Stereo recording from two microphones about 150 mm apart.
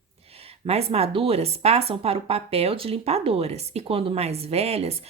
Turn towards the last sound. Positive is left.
turn(degrees=-45)  # may be behind; listen again after turning